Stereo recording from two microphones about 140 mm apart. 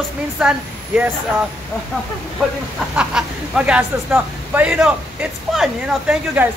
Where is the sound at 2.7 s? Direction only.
5° right (ahead or behind).